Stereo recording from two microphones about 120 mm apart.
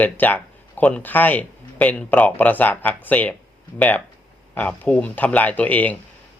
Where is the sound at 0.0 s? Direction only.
15° left (ahead or behind).